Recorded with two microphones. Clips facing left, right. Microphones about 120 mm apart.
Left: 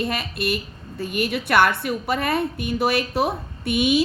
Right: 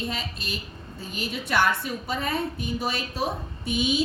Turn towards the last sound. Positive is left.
turn(degrees=65)  # may be behind; listen again after turning